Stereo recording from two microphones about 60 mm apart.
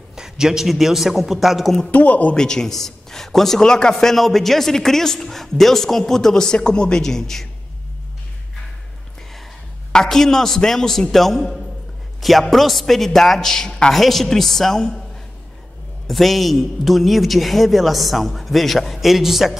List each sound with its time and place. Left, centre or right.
0.1 s a man's voice: centre
1.9 s speech: left
2.3 s a man's voice: centre
9.9 s a man's voice: centre
16.1 s a man's voice: centre